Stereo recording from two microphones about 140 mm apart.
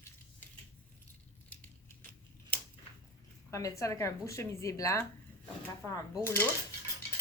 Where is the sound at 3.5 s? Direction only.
20° left (ahead or behind).